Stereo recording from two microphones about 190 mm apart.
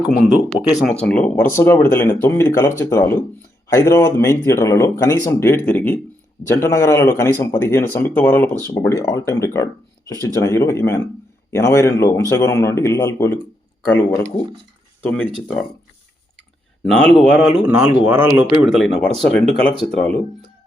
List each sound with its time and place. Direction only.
0.3 s speech: centre (ahead or behind)
16.9 s speech: 5° left (ahead or behind)
18.7 s speech: centre (ahead or behind)